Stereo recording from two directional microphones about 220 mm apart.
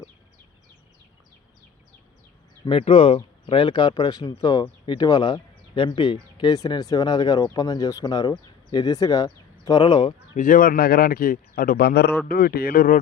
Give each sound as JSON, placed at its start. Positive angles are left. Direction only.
{"t": 2.6, "sound": "speech", "side_deg": 25}
{"t": 10.3, "sound": "a man's voice", "side_deg": 35}